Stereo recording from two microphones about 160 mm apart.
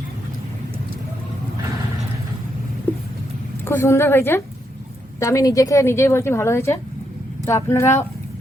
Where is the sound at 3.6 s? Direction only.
15° left (ahead or behind).